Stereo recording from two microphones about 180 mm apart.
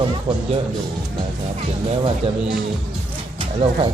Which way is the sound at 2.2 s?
30° right (ahead or behind).